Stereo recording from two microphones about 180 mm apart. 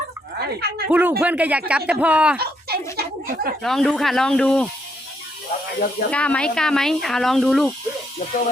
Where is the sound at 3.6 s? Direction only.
Centre (ahead or behind).